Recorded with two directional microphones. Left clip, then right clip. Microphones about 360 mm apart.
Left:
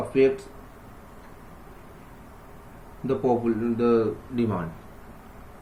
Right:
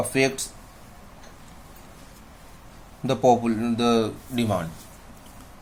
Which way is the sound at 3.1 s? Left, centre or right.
Right.